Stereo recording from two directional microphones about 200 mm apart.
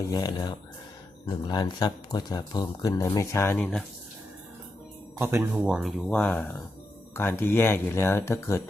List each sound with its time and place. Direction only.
0.1 s speech: 20° left (ahead or behind)
5.1 s speech: 10° right (ahead or behind); by 8.6 s 15° left (ahead or behind)